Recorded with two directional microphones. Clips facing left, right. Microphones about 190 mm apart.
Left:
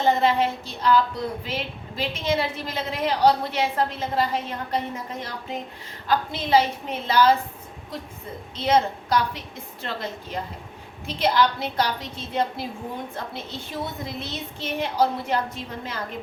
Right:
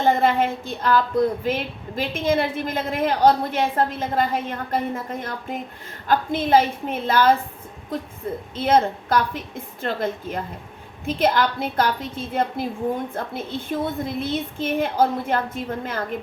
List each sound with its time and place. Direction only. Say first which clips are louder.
0.0 s speech: right 2 dB; 50° right (ahead or behind)
8.5 s speech: right 2 dB; 50° right (ahead or behind)